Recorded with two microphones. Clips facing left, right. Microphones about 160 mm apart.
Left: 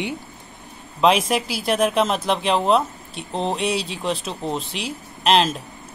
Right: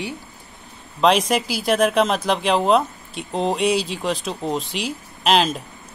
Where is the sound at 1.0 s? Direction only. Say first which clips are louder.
Right 1 dB; centre (ahead or behind).